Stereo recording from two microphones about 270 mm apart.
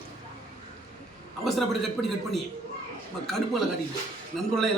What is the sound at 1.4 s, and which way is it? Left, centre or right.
Speech, centre.